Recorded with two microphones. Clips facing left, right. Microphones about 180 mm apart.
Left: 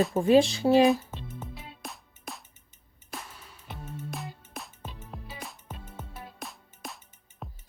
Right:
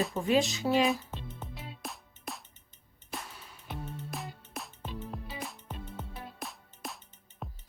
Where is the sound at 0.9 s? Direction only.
Centre (ahead or behind).